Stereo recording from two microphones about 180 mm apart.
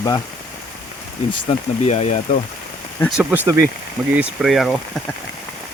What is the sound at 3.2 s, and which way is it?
Speech, 5° right (ahead or behind).